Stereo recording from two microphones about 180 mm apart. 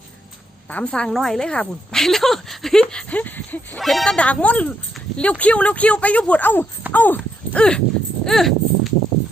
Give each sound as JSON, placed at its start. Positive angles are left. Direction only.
{"t": 0.7, "sound": "a woman's voice", "side_deg": 5}